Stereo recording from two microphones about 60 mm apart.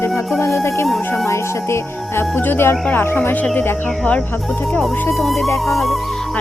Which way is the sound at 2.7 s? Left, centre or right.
Left.